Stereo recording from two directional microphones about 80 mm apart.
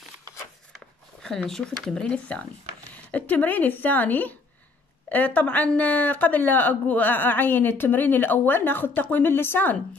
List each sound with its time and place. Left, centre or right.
0.7 s speech: centre; by 9.8 s left